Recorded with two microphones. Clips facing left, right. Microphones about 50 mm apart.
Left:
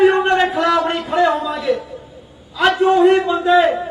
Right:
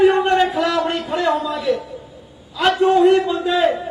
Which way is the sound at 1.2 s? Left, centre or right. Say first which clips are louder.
Left 2 dB; centre.